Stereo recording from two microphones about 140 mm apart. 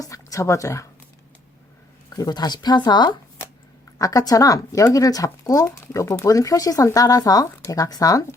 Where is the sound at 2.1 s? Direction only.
30° left (ahead or behind).